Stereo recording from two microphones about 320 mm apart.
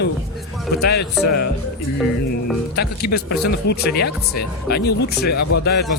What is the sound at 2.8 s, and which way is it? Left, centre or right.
Speech, left.